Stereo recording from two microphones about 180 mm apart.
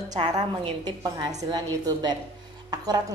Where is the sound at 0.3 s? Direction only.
25° right (ahead or behind).